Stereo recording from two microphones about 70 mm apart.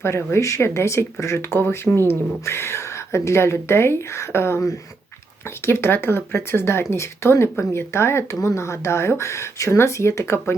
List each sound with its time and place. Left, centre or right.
0.0 s speech: left
5.6 s speech: left